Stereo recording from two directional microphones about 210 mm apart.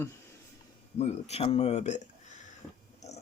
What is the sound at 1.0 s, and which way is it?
Speech, 30° left (ahead or behind).